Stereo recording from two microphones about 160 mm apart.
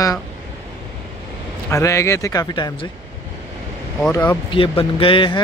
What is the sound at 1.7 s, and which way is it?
Speech, 20° left (ahead or behind).